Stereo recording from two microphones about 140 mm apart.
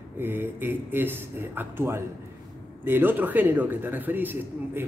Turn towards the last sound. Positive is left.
turn(degrees=-15)  # may be behind; listen again after turning